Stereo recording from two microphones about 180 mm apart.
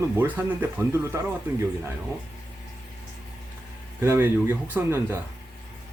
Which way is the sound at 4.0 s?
15° right (ahead or behind).